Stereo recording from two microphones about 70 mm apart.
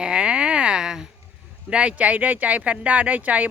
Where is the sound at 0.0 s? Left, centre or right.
Centre.